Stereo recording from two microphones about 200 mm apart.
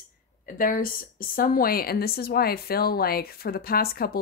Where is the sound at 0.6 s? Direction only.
45° left (ahead or behind).